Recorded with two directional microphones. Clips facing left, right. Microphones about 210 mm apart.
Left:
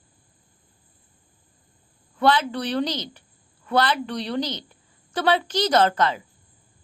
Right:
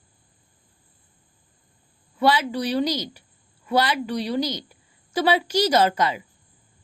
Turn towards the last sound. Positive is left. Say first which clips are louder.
# even
turn(degrees=-10)  # may be behind; listen again after turning